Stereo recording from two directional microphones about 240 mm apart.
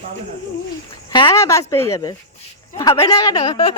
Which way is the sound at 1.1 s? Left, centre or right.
Centre.